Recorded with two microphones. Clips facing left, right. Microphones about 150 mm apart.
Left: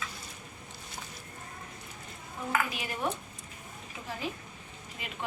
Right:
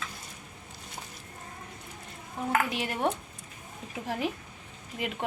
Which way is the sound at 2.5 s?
65° right (ahead or behind).